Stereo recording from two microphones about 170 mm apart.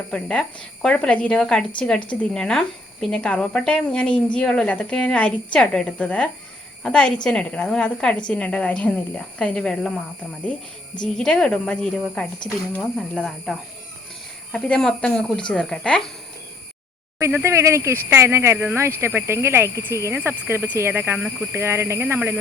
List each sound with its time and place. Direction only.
0.1 s speech: 5° left (ahead or behind)
11.0 s speech: 5° left (ahead or behind)
17.2 s speech: 15° right (ahead or behind)